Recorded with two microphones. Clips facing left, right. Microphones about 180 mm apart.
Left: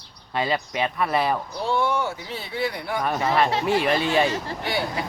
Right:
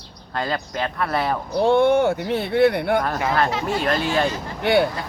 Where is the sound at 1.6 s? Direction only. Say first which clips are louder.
Right 11 dB; 55° right (ahead or behind).